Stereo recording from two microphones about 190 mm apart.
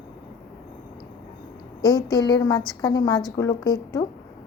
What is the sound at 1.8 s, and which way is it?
A woman's voice, 20° left (ahead or behind).